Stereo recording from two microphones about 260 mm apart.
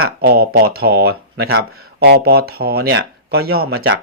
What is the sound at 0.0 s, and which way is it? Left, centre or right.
Speech, right.